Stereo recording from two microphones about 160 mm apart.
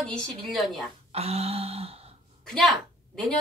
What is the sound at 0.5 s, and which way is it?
Speech, centre (ahead or behind).